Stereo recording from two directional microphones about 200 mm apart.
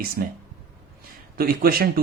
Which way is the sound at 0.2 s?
55° right (ahead or behind).